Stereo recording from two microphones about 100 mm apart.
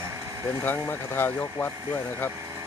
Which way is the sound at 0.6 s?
20° left (ahead or behind).